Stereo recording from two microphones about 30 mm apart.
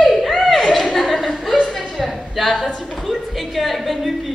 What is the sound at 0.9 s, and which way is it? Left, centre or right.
Chuckle, centre.